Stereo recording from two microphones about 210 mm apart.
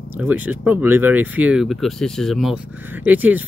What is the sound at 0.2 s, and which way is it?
Speech, 10° right (ahead or behind).